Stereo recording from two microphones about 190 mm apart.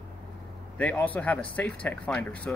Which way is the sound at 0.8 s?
10° left (ahead or behind).